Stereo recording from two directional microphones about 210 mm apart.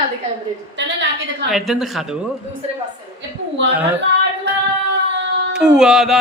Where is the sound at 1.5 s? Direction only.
Centre (ahead or behind).